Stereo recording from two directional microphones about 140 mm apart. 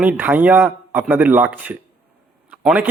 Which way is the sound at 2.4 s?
10° right (ahead or behind).